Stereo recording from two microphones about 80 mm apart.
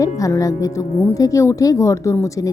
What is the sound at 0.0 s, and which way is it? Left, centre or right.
Speech, left.